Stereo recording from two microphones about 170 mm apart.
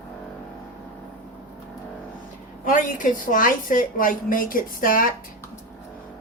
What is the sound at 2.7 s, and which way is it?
A woman's voice, 50° left (ahead or behind).